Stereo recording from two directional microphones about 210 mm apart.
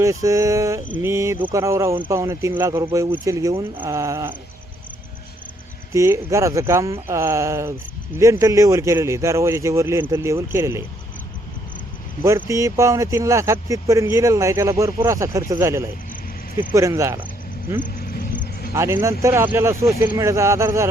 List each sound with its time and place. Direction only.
0.0 s speech: 15° right (ahead or behind)
5.9 s speech: 15° right (ahead or behind)
12.5 s speech: 15° right (ahead or behind)
17.7 s vehicle: 40° left (ahead or behind)
18.7 s speech: 10° right (ahead or behind)